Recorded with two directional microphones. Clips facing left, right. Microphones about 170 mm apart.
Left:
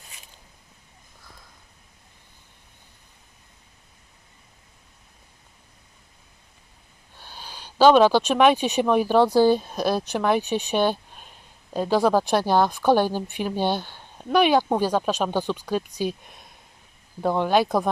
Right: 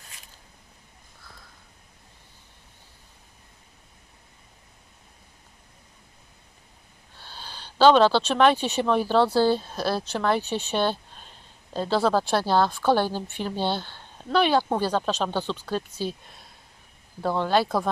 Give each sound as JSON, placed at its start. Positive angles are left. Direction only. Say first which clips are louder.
{"t": 7.2, "sound": "speech", "louder": "left 1 dB", "side_deg": 15}